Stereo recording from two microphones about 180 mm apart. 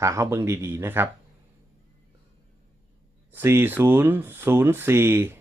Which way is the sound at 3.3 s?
10° right (ahead or behind).